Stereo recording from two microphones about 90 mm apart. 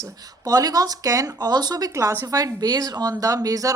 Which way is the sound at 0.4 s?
45° right (ahead or behind).